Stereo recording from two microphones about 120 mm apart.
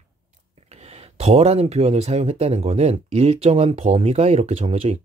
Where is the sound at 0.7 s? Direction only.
60° right (ahead or behind).